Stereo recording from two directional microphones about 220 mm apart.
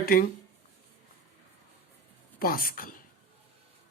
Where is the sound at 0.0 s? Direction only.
40° left (ahead or behind).